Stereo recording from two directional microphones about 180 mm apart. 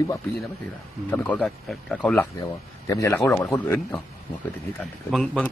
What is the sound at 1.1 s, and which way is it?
A man's voice, 10° left (ahead or behind).